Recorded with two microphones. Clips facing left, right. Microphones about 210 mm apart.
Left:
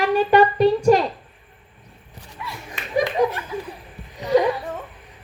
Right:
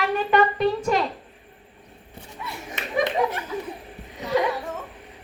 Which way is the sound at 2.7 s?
20° right (ahead or behind).